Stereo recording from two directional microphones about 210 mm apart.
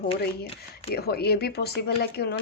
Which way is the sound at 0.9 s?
50° left (ahead or behind).